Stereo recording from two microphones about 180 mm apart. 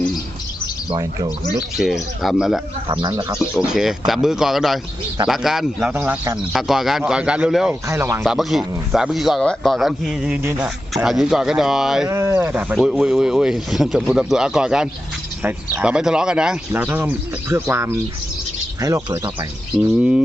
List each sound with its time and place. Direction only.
0.9 s speech: 25° right (ahead or behind)
1.5 s speech: centre (ahead or behind)
2.9 s speech: 25° right (ahead or behind)
3.3 s speech: 5° right (ahead or behind)
6.5 s speech: centre (ahead or behind)
8.2 s speech: centre (ahead or behind)
12.0 s speech: 15° right (ahead or behind)
20.0 s speech: 5° right (ahead or behind)